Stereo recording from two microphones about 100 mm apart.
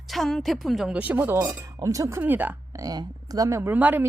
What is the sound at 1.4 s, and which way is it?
Speech, 35° right (ahead or behind).